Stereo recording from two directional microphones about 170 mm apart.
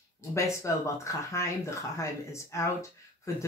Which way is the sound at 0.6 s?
15° left (ahead or behind).